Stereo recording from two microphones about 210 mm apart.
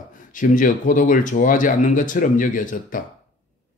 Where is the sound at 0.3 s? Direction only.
40° left (ahead or behind).